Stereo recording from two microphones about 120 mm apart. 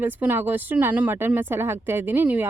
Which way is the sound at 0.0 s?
15° right (ahead or behind).